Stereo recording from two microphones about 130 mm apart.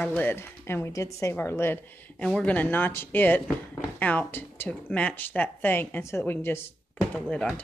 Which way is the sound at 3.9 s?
15° left (ahead or behind).